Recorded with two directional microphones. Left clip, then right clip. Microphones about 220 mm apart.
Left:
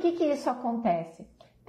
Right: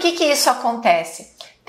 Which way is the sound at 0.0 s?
5° right (ahead or behind).